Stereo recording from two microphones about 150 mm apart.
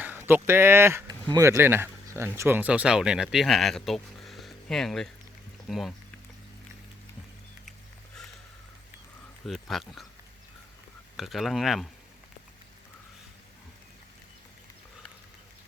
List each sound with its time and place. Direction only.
0.0 s speech: 15° right (ahead or behind)
9.5 s speech: centre (ahead or behind)
11.2 s speech: centre (ahead or behind)